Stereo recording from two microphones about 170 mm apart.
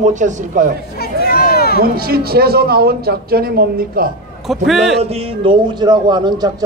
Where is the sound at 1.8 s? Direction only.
60° right (ahead or behind).